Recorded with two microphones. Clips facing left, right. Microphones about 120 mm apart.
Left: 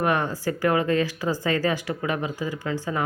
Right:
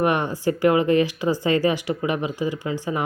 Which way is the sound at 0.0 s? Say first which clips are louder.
Right 3 dB; 20° right (ahead or behind).